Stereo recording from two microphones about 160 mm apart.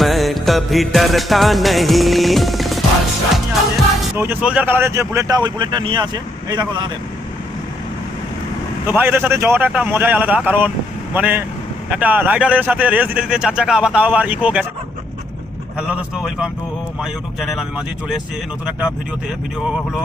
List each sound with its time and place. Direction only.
0.0 s music: centre (ahead or behind)
4.2 s speech: 10° right (ahead or behind); by 6.9 s 30° right (ahead or behind)
8.9 s speech: 15° right (ahead or behind)
15.9 s speech: 5° right (ahead or behind)